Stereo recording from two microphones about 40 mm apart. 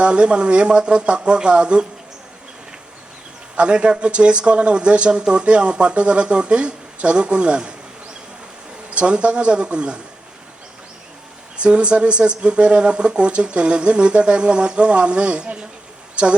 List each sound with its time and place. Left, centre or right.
0.0 s speech: right
3.5 s speech: right
8.9 s speech: right
11.5 s speech: right